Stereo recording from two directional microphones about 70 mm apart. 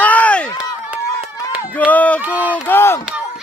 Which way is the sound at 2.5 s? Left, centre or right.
Left.